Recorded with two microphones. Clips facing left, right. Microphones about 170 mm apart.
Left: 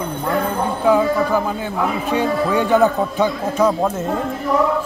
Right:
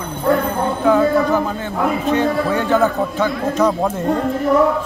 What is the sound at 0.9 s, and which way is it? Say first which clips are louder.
Speech: right 1 dB; 10° left (ahead or behind).